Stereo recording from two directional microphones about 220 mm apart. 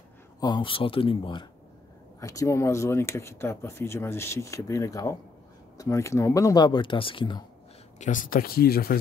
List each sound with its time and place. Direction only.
0.4 s speech: 20° left (ahead or behind)
8.0 s speech: 35° left (ahead or behind)